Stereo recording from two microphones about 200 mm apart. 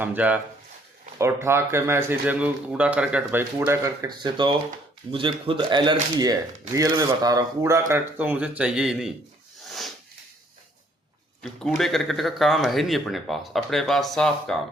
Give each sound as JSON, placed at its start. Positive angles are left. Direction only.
{"t": 0.0, "sound": "speech", "side_deg": -10}
{"t": 9.6, "sound": "rub", "side_deg": 0}
{"t": 11.4, "sound": "speech", "side_deg": 0}